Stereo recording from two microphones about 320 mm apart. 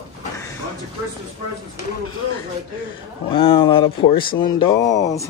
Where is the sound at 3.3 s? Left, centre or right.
Centre.